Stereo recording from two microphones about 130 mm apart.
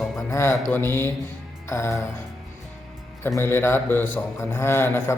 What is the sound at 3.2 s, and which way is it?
A man's voice, 20° left (ahead or behind).